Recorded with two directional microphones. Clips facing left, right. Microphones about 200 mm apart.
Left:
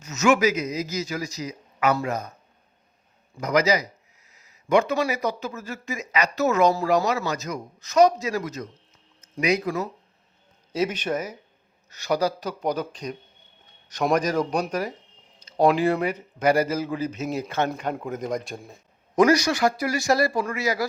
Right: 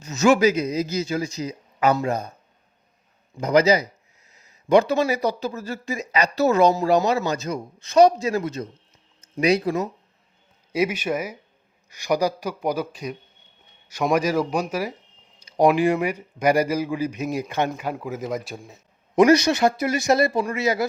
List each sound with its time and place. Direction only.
0.0 s a man's voice: 35° right (ahead or behind)
3.4 s a man's voice: 30° right (ahead or behind)
10.7 s a man's voice: 10° right (ahead or behind)
17.7 s a man's voice: 5° right (ahead or behind)
19.1 s a man's voice: 25° right (ahead or behind)